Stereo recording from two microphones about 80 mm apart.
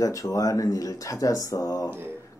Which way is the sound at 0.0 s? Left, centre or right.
Left.